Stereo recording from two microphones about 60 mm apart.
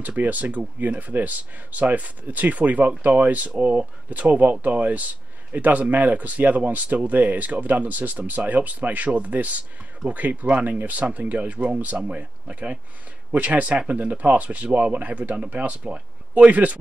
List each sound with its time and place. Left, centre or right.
0.0 s speech: right